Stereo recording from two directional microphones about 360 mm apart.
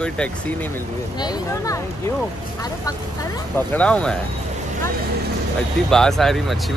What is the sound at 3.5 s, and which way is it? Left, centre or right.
Speech, centre.